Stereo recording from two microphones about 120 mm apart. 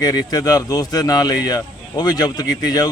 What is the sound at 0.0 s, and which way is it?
Speech, 30° left (ahead or behind).